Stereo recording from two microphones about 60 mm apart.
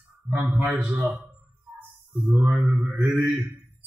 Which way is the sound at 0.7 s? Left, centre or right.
Right.